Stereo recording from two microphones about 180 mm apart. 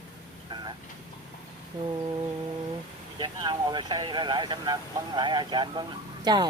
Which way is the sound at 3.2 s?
25° right (ahead or behind).